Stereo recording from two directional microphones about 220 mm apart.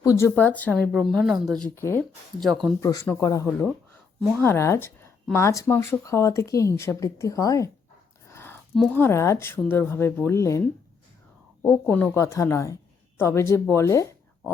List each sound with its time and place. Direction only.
0.0 s a woman's voice: 15° left (ahead or behind)
2.4 s speech: centre (ahead or behind)
2.8 s a woman's voice: 15° left (ahead or behind)
8.3 s a sound: 10° left (ahead or behind)
8.7 s a woman's voice: 5° left (ahead or behind)